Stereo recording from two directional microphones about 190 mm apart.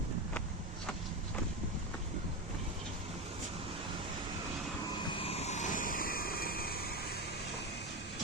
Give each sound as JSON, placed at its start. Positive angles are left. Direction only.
{"t": 5.1, "sound": "vehicle", "side_deg": 30}